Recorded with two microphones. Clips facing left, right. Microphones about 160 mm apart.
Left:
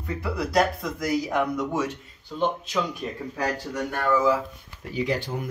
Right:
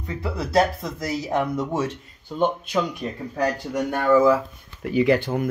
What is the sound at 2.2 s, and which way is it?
Speech, 55° right (ahead or behind).